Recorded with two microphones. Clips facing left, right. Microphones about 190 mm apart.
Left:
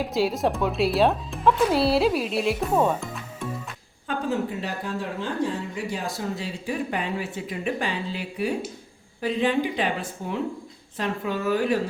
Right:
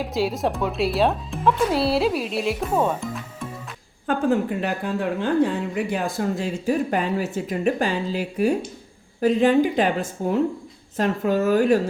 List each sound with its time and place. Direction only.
0.0 s speech: centre (ahead or behind)
4.0 s speech: 55° right (ahead or behind)